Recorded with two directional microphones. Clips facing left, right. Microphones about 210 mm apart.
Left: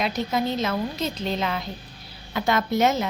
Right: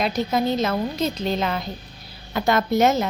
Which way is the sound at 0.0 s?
40° right (ahead or behind).